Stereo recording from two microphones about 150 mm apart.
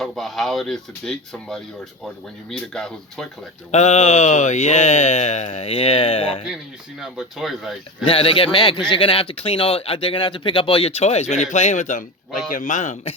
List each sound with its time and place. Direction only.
0.0 s speech: centre (ahead or behind)
3.7 s a sound: 50° left (ahead or behind)
7.0 s speech: 5° right (ahead or behind)
8.0 s a man's voice: 35° left (ahead or behind); by 13.1 s 55° left (ahead or behind)